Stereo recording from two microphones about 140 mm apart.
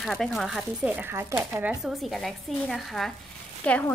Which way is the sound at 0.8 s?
15° right (ahead or behind).